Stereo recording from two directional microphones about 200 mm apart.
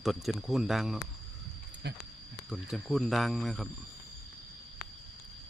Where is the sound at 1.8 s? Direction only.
55° right (ahead or behind).